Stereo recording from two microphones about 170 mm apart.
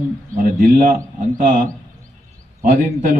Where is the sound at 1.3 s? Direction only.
50° right (ahead or behind).